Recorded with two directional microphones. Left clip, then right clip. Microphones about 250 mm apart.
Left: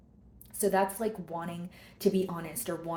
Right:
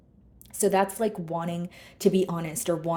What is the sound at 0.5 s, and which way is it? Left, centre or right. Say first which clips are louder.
Speech: right 4 dB; right.